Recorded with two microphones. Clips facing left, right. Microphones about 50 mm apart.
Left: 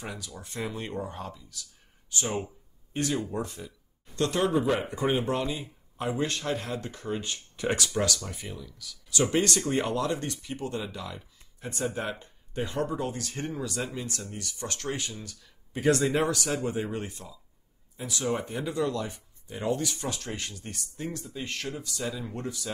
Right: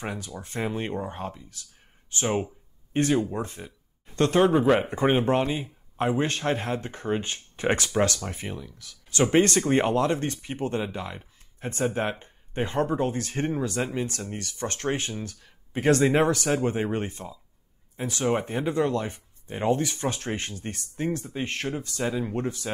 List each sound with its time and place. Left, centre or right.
0.0 s speech: right